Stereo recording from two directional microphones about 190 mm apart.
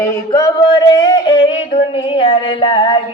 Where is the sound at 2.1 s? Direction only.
30° left (ahead or behind).